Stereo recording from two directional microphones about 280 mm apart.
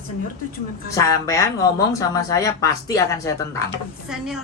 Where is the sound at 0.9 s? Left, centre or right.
Centre.